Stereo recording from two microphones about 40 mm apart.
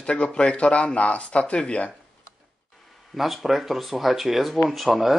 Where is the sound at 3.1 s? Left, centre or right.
Centre.